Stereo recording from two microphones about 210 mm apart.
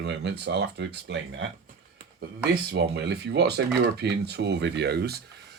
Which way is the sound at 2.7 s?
55° right (ahead or behind).